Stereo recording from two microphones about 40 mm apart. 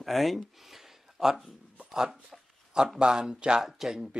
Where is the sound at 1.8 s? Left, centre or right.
Centre.